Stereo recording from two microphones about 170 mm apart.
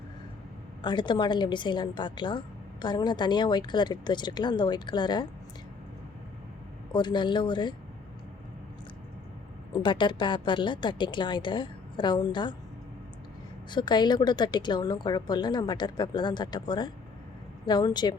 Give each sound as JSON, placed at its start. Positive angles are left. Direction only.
{"t": 0.8, "sound": "a woman's voice", "side_deg": 25}
{"t": 6.9, "sound": "a woman's voice", "side_deg": 25}
{"t": 9.7, "sound": "a woman's voice", "side_deg": 30}
{"t": 13.7, "sound": "a woman's voice", "side_deg": 25}